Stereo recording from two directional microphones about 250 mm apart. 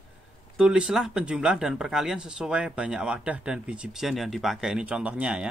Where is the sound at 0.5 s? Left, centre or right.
Centre.